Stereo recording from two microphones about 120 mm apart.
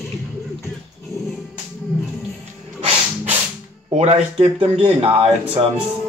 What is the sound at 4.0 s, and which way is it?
Speech, 55° right (ahead or behind).